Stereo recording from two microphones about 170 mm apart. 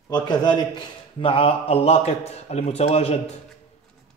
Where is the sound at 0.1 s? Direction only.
25° left (ahead or behind).